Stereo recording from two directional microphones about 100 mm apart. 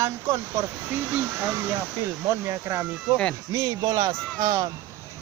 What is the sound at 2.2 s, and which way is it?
Speech, 30° right (ahead or behind).